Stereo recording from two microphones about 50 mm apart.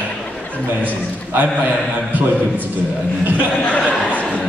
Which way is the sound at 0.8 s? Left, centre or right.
Right.